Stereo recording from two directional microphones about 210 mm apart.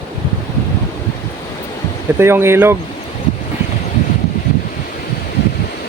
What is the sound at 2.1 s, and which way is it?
Speech, 10° right (ahead or behind).